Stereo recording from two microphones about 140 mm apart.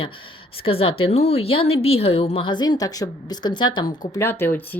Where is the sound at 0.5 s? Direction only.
40° left (ahead or behind).